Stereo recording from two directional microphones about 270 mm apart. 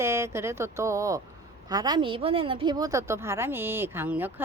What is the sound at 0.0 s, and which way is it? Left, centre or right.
A woman's voice, centre.